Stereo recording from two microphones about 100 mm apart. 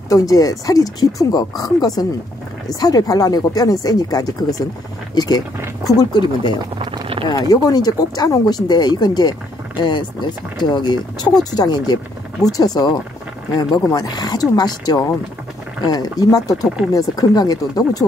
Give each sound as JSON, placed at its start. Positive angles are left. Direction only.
{"t": 0.1, "sound": "speech", "side_deg": 35}
{"t": 6.6, "sound": "a sound", "side_deg": -55}
{"t": 7.2, "sound": "speech", "side_deg": 40}
{"t": 16.6, "sound": "speech", "side_deg": -5}
{"t": 16.9, "sound": "speech", "side_deg": 35}